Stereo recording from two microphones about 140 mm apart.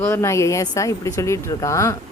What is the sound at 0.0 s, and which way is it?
A woman's voice, 20° left (ahead or behind).